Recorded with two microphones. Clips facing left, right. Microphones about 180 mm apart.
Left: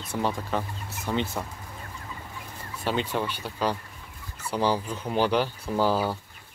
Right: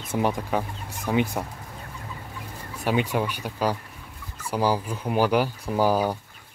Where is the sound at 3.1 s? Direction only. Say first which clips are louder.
Right 3 dB; 10° right (ahead or behind).